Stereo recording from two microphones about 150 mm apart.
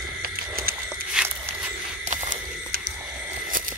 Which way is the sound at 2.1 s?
60° right (ahead or behind).